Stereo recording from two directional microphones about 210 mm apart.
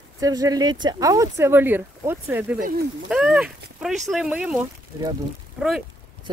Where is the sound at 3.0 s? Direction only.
5° right (ahead or behind).